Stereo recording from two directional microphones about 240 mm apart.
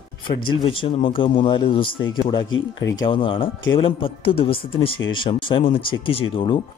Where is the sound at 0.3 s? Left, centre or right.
Left.